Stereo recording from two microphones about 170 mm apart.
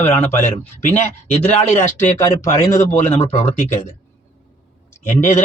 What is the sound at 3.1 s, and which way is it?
Speech, 35° left (ahead or behind).